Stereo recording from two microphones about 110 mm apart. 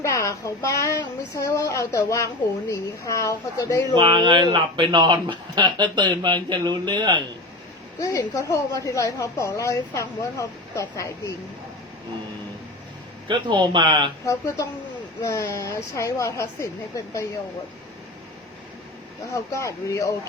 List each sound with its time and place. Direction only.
0.0 s a woman's voice: 25° left (ahead or behind)
3.9 s speech: 45° right (ahead or behind)
7.9 s a woman's voice: 30° left (ahead or behind)
13.2 s speech: 45° right (ahead or behind)
14.3 s a woman's voice: 30° left (ahead or behind)
19.3 s a woman's voice: 30° left (ahead or behind)